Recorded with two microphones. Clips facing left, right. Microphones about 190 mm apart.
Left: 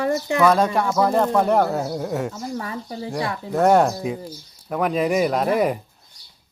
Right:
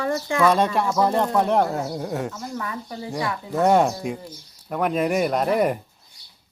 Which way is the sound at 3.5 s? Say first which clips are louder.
Left 2 dB; centre (ahead or behind).